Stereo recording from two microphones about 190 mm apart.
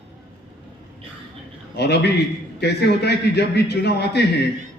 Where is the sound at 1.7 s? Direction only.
60° left (ahead or behind).